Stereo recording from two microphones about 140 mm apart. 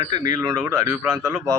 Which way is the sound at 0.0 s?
30° right (ahead or behind).